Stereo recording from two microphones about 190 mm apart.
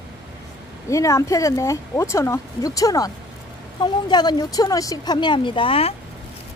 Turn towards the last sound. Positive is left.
turn(degrees=30)  # may be behind; listen again after turning